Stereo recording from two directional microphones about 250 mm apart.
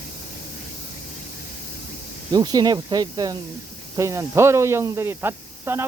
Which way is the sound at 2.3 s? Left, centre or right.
Centre.